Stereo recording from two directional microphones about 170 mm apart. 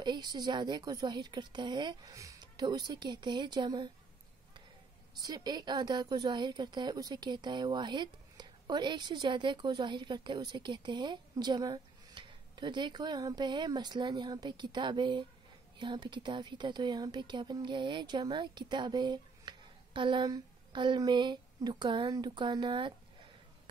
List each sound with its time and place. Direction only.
0.0 s a woman's voice: 25° right (ahead or behind)
5.2 s a woman's voice: 25° right (ahead or behind)